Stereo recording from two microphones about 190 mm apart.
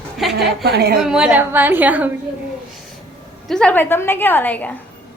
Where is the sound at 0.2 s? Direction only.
Centre (ahead or behind).